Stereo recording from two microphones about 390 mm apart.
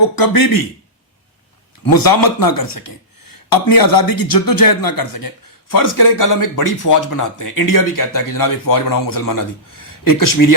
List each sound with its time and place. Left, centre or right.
0.2 s a man's voice: left
1.8 s a man's voice: left